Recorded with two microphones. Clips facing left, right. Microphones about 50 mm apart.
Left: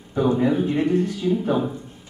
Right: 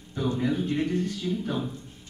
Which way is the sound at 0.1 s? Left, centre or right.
Left.